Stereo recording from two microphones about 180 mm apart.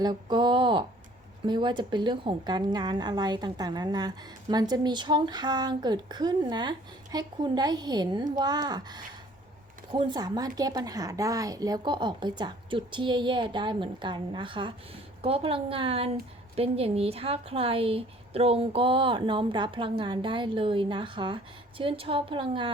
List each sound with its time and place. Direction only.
0.0 s a woman's voice: 25° right (ahead or behind)